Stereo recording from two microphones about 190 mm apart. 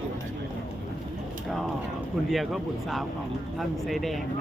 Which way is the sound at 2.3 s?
Centre (ahead or behind).